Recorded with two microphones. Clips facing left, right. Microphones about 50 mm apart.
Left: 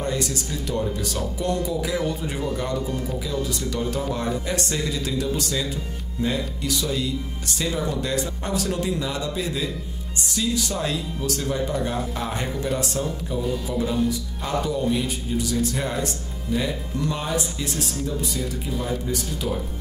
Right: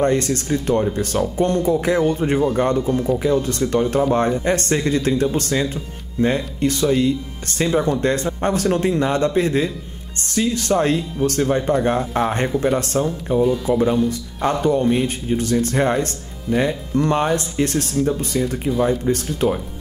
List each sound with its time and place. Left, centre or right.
0.0 s speech: right
13.0 s speech: right
14.0 s speech: right